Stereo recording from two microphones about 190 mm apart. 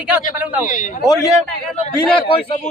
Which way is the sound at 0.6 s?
40° left (ahead or behind).